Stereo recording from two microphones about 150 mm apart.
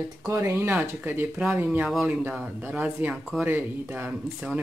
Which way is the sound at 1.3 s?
5° right (ahead or behind).